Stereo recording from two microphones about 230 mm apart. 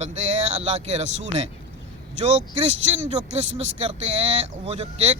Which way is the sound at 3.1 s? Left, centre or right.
Right.